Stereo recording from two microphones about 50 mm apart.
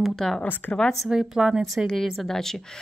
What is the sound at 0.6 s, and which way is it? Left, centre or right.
Speech, left.